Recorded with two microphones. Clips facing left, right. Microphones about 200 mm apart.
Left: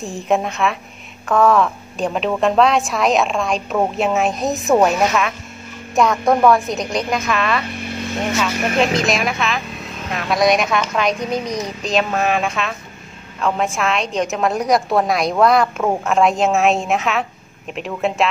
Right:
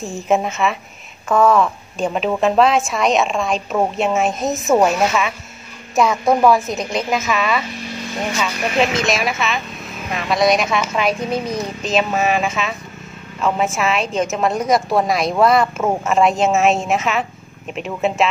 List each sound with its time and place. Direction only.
0.3 s a woman's voice: centre (ahead or behind)
7.7 s vehicle: 55° left (ahead or behind)
8.9 s a woman's voice: centre (ahead or behind)